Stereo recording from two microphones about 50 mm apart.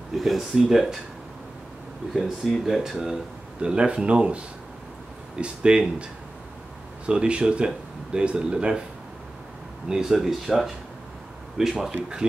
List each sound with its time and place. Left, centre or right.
0.2 s speech: centre
2.4 s speech: centre
3.6 s speech: right
7.1 s speech: right
9.8 s speech: centre